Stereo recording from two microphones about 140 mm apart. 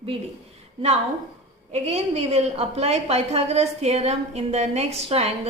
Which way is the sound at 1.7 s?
50° right (ahead or behind).